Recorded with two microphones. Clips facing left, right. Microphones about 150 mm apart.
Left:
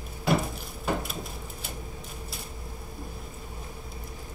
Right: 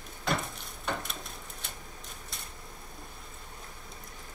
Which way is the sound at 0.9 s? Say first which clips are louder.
Left 5 dB; 5° left (ahead or behind).